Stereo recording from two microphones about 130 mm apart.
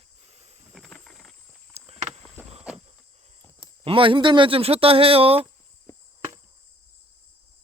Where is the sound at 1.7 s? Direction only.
55° right (ahead or behind).